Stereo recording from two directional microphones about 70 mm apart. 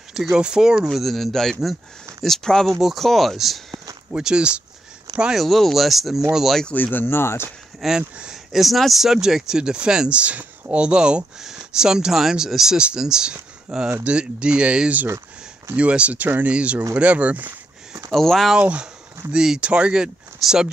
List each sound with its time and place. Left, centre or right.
0.1 s speech: centre
0.8 s speech: centre
4.1 s speech: centre
5.4 s speech: centre
6.7 s speech: left
7.8 s speech: centre
18.1 s speech: centre
18.6 s speech: centre